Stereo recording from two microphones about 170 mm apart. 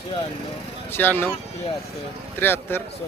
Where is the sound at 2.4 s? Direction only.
10° left (ahead or behind).